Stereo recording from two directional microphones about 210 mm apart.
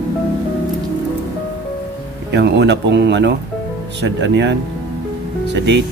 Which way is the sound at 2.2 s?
55° right (ahead or behind).